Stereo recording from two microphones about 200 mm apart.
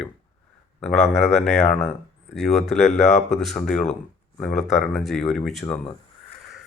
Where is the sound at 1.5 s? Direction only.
35° left (ahead or behind).